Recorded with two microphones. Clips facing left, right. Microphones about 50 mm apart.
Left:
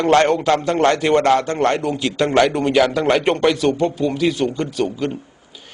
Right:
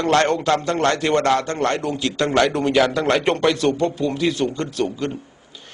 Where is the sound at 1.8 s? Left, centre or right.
Centre.